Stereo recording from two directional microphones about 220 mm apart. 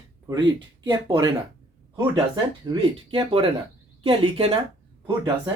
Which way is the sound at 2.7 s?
20° right (ahead or behind).